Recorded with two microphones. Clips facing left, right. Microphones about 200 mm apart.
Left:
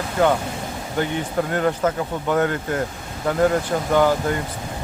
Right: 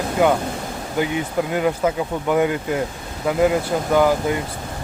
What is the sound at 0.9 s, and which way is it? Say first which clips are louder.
Speech: right 1 dB; 10° right (ahead or behind).